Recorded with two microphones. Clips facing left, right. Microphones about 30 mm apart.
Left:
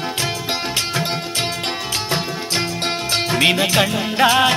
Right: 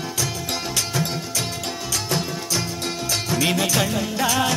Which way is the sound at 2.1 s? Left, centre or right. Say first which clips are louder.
Left 3 dB; left.